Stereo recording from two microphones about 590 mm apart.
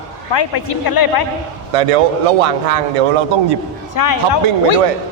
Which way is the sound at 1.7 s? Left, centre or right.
Right.